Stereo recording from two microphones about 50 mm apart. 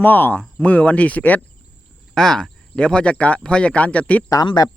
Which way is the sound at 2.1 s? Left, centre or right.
Centre.